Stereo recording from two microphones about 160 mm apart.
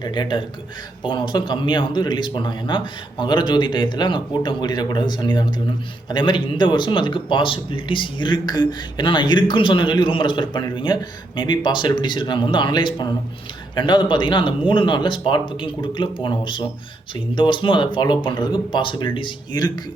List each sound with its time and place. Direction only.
0.0 s a man's voice: 30° left (ahead or behind)